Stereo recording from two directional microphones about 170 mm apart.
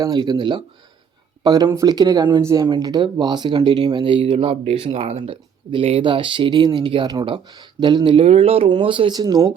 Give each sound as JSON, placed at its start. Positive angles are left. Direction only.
{"t": 0.0, "sound": "speech", "side_deg": -25}